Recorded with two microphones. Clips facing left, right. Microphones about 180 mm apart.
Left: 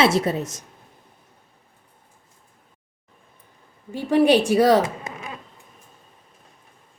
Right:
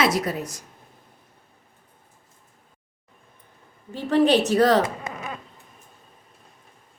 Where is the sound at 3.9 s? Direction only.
10° left (ahead or behind).